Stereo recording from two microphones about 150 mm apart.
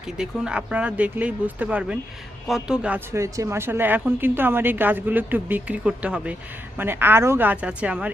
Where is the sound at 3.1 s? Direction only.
20° right (ahead or behind).